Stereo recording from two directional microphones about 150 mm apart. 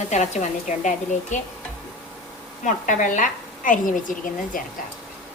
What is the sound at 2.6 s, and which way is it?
A woman's voice, 60° left (ahead or behind).